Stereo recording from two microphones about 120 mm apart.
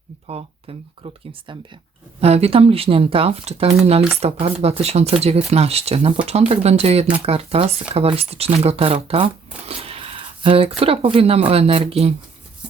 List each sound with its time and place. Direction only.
0.3 s speech: 55° right (ahead or behind)
2.2 s speech: 60° right (ahead or behind)